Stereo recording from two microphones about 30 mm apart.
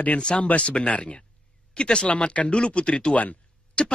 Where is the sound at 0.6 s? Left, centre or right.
Left.